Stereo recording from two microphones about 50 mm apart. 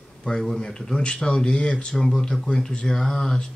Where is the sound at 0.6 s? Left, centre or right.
Centre.